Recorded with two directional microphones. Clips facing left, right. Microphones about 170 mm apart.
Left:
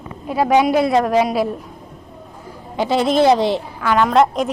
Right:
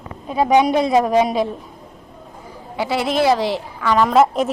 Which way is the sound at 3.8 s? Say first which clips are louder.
Even; centre (ahead or behind).